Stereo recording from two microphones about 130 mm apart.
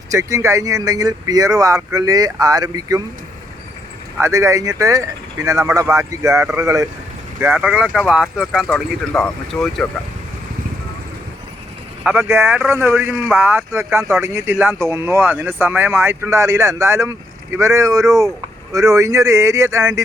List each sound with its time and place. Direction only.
0.1 s speech: 25° right (ahead or behind)
4.2 s speech: 25° right (ahead or behind)
7.4 s speech: 10° right (ahead or behind)
8.7 s speech: 10° left (ahead or behind)
12.0 s speech: 15° right (ahead or behind)